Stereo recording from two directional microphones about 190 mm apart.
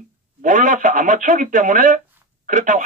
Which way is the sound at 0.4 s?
40° right (ahead or behind).